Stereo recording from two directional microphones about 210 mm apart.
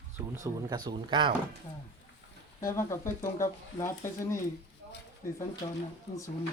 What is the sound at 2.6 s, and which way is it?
Speech, 15° left (ahead or behind).